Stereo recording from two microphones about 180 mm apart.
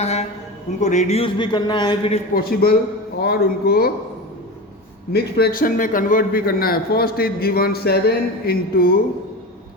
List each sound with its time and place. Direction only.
0.0 s a man's voice: 35° left (ahead or behind)
2.3 s a man's voice: 55° left (ahead or behind)
5.1 s a man's voice: 55° left (ahead or behind)